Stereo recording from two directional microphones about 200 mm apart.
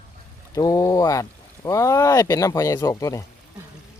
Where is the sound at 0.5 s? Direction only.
20° left (ahead or behind).